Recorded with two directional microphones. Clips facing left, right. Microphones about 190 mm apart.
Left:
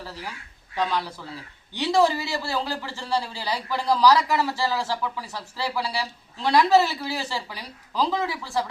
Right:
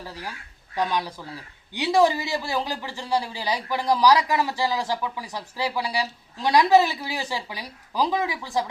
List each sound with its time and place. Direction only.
0.0 s a man's voice: 15° right (ahead or behind)